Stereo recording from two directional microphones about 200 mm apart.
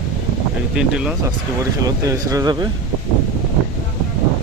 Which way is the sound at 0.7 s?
5° right (ahead or behind).